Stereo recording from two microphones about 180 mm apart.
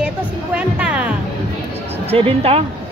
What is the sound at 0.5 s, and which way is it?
Music, 5° right (ahead or behind).